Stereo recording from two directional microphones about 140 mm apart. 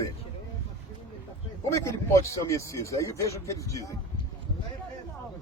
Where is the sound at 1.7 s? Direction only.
20° left (ahead or behind).